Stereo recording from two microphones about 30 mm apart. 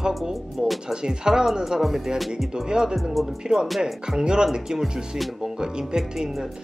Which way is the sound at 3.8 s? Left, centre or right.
Right.